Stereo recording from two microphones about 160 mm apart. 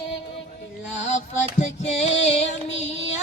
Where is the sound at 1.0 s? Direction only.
45° left (ahead or behind).